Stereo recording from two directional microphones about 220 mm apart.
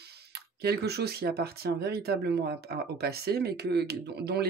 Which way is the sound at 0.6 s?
45° right (ahead or behind).